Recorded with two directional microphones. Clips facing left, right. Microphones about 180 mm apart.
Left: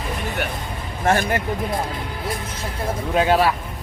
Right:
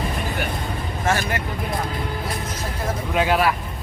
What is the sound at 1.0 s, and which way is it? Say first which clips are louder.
Speech: left 4 dB; 55° left (ahead or behind).